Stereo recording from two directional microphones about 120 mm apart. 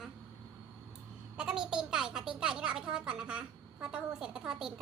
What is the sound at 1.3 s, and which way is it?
A woman's voice, 5° right (ahead or behind).